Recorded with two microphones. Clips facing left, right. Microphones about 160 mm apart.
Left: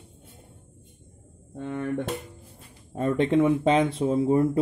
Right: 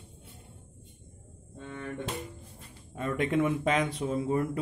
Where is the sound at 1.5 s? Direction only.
60° left (ahead or behind).